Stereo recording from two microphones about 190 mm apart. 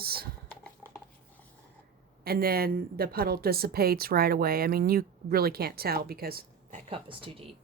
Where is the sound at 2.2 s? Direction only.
55° right (ahead or behind).